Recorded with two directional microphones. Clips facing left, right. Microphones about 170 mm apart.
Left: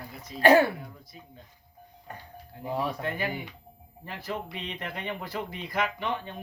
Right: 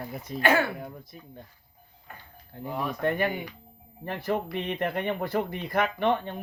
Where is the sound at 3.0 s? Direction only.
55° right (ahead or behind).